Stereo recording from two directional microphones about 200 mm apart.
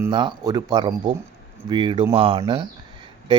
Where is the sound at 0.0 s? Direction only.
25° right (ahead or behind).